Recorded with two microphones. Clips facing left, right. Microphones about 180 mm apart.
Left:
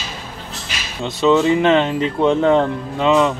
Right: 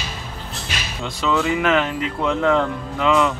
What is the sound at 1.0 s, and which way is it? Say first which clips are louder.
Speech: left 7 dB; 25° left (ahead or behind).